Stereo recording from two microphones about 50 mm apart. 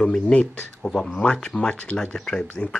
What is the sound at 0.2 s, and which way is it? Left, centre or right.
Speech, left.